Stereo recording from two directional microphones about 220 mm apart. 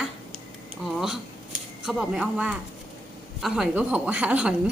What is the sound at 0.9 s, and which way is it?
Speech, centre (ahead or behind).